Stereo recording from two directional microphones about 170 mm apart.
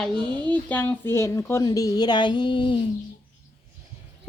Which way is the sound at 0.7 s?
10° left (ahead or behind).